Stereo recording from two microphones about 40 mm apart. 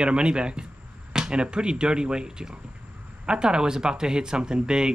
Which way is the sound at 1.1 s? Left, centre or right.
Centre.